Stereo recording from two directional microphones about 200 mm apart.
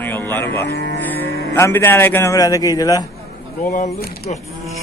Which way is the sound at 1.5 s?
10° left (ahead or behind).